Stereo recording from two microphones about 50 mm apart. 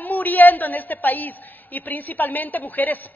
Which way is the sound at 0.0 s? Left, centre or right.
Left.